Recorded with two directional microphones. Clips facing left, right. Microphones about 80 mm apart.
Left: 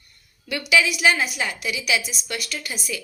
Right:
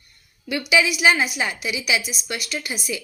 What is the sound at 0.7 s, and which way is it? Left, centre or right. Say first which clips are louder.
A woman's voice: right 1 dB; centre.